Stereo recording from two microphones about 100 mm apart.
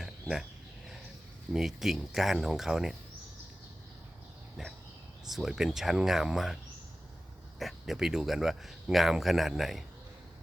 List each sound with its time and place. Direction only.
0.0 s a sound: 5° right (ahead or behind)
1.5 s speech: 5° right (ahead or behind)
5.2 s speech: 5° right (ahead or behind)
7.6 s speech: centre (ahead or behind)